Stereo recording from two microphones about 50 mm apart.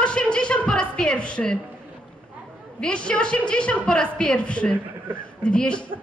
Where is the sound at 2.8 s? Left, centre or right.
Left.